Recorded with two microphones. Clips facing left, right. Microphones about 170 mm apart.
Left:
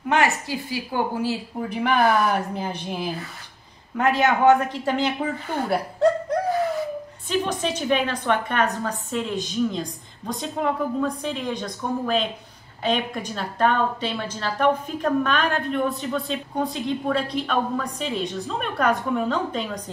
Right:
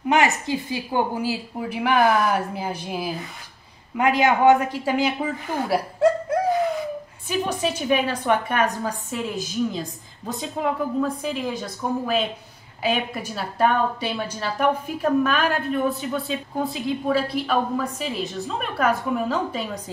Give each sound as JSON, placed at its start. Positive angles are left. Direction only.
{"t": 0.1, "sound": "a woman's voice", "side_deg": -20}
{"t": 1.2, "sound": "a woman's voice", "side_deg": -10}